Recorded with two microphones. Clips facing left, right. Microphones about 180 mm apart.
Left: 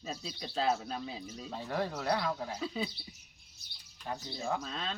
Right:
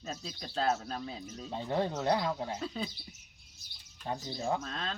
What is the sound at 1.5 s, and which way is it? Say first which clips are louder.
Speech: right 3 dB; 20° right (ahead or behind).